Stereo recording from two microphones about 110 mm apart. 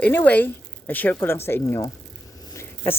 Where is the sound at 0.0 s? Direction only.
15° left (ahead or behind).